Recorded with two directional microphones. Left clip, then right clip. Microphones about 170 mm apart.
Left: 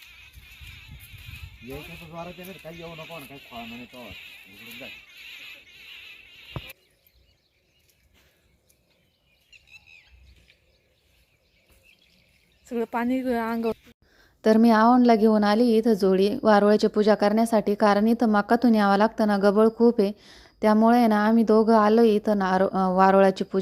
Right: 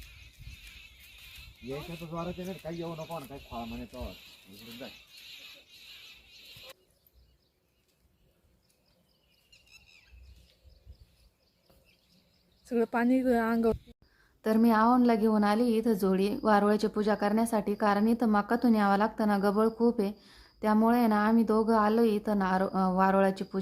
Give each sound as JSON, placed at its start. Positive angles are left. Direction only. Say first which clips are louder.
{"t": 2.6, "sound": "speech", "louder": "even", "side_deg": -25}
{"t": 12.6, "sound": "speech", "louder": "left 1 dB", "side_deg": 0}
{"t": 14.2, "sound": "a woman's voice", "louder": "left 8 dB", "side_deg": 35}